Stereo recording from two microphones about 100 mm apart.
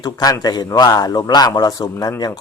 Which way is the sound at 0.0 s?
40° left (ahead or behind).